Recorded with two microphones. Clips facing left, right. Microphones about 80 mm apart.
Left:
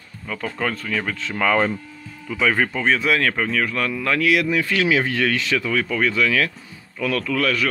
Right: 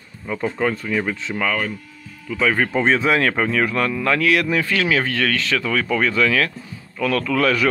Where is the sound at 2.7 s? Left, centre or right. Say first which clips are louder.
Right 3 dB; right.